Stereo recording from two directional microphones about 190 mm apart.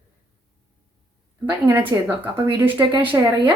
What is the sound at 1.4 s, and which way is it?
Speech, 10° right (ahead or behind).